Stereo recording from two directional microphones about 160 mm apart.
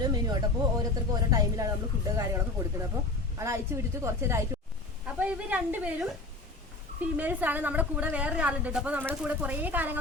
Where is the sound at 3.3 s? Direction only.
15° right (ahead or behind).